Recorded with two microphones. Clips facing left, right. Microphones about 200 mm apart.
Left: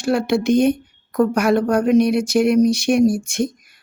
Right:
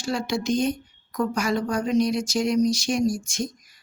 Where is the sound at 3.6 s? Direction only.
60° left (ahead or behind).